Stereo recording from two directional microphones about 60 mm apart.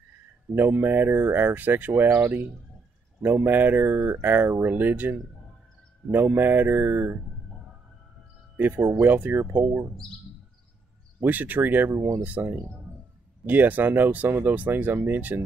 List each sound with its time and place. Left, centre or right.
0.6 s speech: right
6.1 s speech: right
8.5 s speech: right
11.2 s speech: right